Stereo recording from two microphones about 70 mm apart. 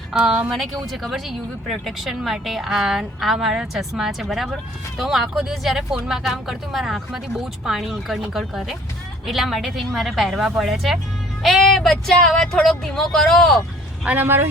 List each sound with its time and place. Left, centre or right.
0.1 s speech: centre
14.0 s speech: right